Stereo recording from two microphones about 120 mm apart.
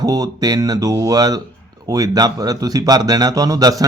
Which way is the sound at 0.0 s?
30° right (ahead or behind).